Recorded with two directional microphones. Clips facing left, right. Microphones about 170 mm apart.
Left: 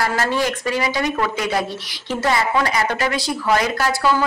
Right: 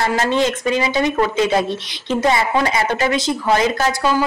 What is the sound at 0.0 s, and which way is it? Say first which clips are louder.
A woman's voice: right 3 dB; 25° right (ahead or behind).